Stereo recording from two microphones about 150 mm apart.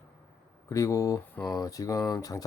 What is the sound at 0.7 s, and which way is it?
Speech, 20° left (ahead or behind).